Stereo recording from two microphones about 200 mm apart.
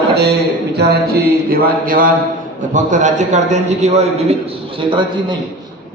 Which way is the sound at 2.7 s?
40° right (ahead or behind).